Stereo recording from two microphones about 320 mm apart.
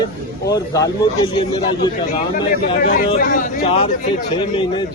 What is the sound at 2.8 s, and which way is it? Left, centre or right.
A man's voice, left.